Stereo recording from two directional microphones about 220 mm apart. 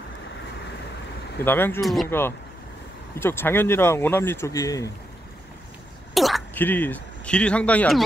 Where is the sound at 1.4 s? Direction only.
10° left (ahead or behind).